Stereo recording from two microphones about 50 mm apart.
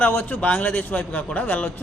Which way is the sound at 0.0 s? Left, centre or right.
Left.